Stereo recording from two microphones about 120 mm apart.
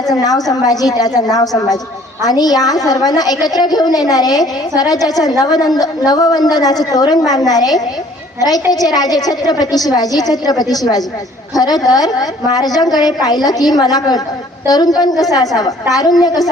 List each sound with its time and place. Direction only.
0.1 s a woman's voice: 30° left (ahead or behind)